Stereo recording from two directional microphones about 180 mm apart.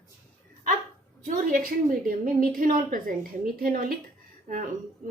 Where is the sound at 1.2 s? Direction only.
50° right (ahead or behind).